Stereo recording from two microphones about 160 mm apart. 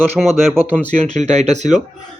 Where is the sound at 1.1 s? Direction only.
45° right (ahead or behind).